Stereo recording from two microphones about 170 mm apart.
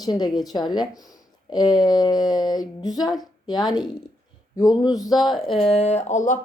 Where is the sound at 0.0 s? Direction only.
25° left (ahead or behind).